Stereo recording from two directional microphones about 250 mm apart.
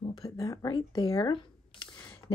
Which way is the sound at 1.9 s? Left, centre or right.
Centre.